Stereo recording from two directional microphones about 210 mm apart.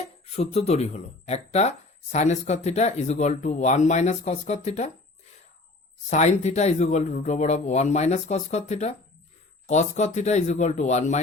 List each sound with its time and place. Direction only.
0.3 s speech: 30° left (ahead or behind)
6.1 s speech: 30° left (ahead or behind)